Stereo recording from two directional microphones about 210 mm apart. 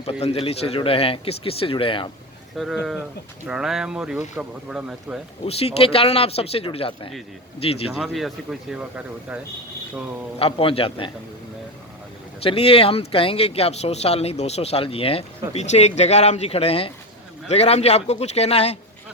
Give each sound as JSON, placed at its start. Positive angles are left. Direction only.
{"t": 0.0, "sound": "speech", "side_deg": 30}
{"t": 2.6, "sound": "speech", "side_deg": 0}
{"t": 5.5, "sound": "speech", "side_deg": 30}
{"t": 7.9, "sound": "speech", "side_deg": 0}
{"t": 10.3, "sound": "speech", "side_deg": 25}
{"t": 12.4, "sound": "a man's voice", "side_deg": 25}